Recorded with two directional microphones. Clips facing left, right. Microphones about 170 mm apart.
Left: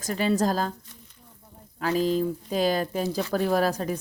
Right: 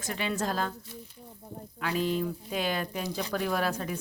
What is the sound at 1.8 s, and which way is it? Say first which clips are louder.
Speech: left 5 dB; 35° left (ahead or behind).